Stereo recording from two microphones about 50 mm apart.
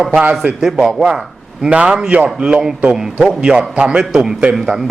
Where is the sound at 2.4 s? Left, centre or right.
Centre.